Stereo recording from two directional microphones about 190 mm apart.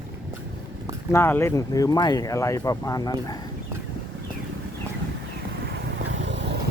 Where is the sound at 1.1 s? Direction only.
15° left (ahead or behind).